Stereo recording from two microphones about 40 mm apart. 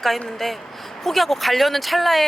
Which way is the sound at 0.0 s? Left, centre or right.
Centre.